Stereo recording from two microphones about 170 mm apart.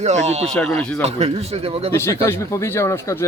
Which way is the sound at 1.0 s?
40° right (ahead or behind).